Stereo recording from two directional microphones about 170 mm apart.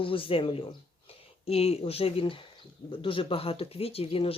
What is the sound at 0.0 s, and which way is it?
Speech, 30° left (ahead or behind).